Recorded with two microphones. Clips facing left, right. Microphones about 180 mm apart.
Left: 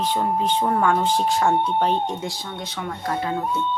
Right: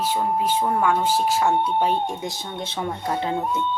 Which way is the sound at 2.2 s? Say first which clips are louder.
Right 1 dB; 25° right (ahead or behind).